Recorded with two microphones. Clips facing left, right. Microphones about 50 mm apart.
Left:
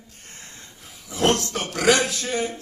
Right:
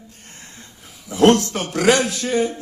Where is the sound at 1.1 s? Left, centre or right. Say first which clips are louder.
Right 7 dB; right.